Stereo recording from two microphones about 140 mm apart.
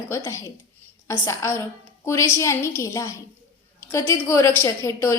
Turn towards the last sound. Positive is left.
turn(degrees=20)  # may be behind; listen again after turning